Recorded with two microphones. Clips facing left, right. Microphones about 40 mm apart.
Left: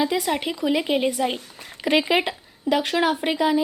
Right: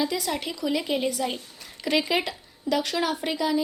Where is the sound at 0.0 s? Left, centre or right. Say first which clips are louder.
Left 5 dB; left.